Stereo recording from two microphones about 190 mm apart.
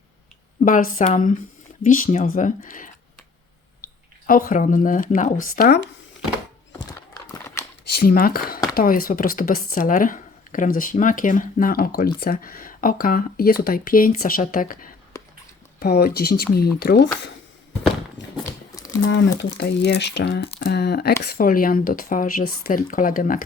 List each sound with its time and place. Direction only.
0.6 s speech: 45° left (ahead or behind)
3.8 s a sound: 50° left (ahead or behind)
4.3 s speech: 45° left (ahead or behind)
7.3 s a sound: 15° left (ahead or behind)
7.9 s speech: 50° left (ahead or behind)
18.7 s crumpling: 20° left (ahead or behind)
19.0 s speech: 65° left (ahead or behind); by 23.4 s 45° left (ahead or behind)